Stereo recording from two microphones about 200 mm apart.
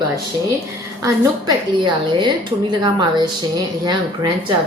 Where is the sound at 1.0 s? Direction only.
20° right (ahead or behind).